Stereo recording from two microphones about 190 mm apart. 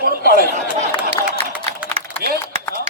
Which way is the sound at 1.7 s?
35° right (ahead or behind).